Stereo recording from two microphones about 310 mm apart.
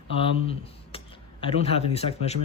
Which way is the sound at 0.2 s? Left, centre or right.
Centre.